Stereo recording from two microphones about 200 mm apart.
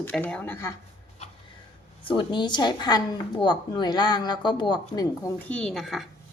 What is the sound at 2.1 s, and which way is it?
A woman's voice, 25° left (ahead or behind).